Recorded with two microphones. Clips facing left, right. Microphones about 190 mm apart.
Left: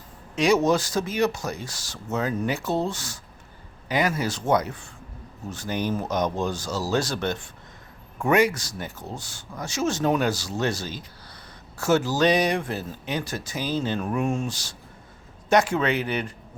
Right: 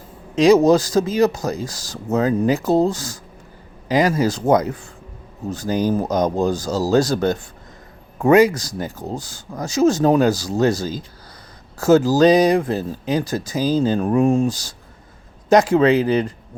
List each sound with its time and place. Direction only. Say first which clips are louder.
0.4 s speech: right 8 dB; 35° right (ahead or behind)
11.8 s speech: right 8 dB; 35° right (ahead or behind)